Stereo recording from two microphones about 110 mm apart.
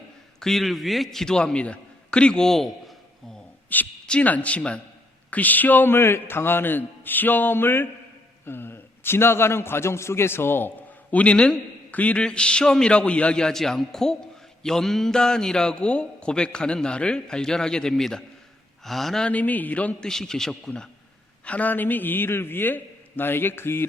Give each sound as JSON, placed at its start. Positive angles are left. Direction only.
{"t": 0.3, "sound": "a man's voice", "side_deg": 5}
{"t": 3.7, "sound": "a man's voice", "side_deg": 10}